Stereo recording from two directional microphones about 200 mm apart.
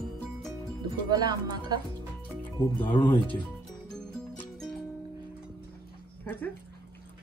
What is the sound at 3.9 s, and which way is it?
Music, 5° left (ahead or behind).